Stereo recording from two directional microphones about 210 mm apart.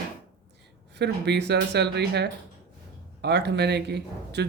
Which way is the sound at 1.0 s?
55° right (ahead or behind).